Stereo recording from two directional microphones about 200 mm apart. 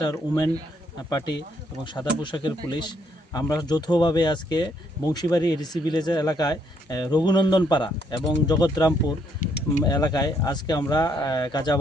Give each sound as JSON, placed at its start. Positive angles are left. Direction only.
{"t": 0.0, "sound": "a man's voice", "side_deg": 15}
{"t": 9.4, "sound": "speech", "side_deg": 40}
{"t": 9.8, "sound": "a man's voice", "side_deg": 20}